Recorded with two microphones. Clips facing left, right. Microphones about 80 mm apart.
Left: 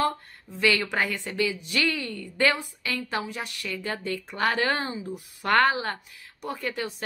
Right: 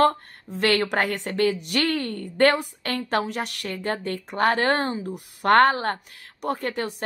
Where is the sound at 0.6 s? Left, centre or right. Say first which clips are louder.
Right 3 dB; right.